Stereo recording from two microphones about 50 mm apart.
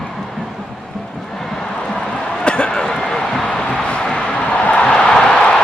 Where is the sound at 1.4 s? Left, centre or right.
Centre.